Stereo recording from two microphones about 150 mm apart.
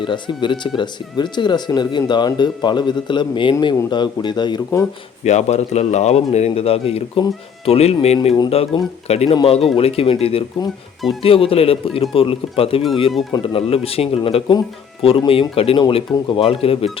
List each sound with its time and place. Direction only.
0.0 s speech: 30° left (ahead or behind)
5.2 s speech: 50° left (ahead or behind)